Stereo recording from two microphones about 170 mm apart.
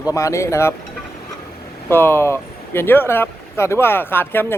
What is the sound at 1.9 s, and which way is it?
A man's voice, 15° left (ahead or behind).